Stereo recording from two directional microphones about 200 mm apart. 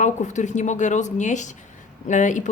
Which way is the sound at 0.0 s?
35° left (ahead or behind).